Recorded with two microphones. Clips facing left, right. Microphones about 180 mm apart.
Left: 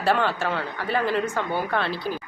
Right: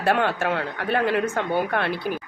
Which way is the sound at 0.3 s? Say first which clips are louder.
Right 2 dB; 60° right (ahead or behind).